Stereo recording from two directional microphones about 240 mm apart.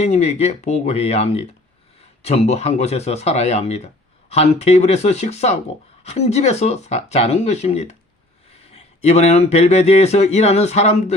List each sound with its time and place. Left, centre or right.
0.0 s speech: left